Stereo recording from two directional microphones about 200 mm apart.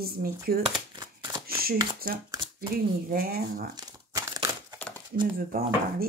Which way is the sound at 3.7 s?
20° right (ahead or behind).